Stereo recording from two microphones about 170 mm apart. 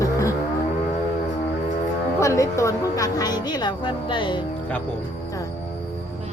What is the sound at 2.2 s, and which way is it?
Speech, 15° left (ahead or behind).